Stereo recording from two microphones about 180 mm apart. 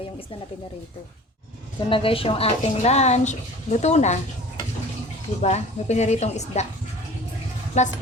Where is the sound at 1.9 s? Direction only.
30° left (ahead or behind).